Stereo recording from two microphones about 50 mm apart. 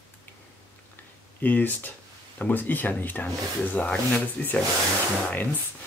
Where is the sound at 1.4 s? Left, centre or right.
Left.